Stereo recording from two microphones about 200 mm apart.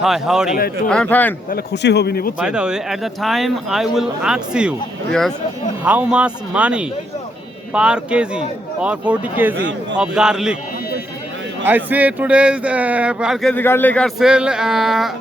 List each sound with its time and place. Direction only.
0.0 s speech: centre (ahead or behind)
1.5 s speech: 55° left (ahead or behind)
2.4 s speech: 5° right (ahead or behind)
5.8 s speech: 5° right (ahead or behind)
9.6 s a man's voice: 65° right (ahead or behind)
10.0 s speech: 5° right (ahead or behind)
11.6 s speech: 10° right (ahead or behind)